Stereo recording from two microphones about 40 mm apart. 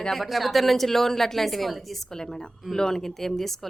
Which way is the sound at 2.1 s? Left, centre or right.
Centre.